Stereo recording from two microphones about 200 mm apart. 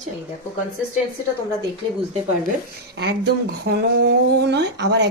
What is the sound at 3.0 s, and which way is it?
Speech, 55° right (ahead or behind).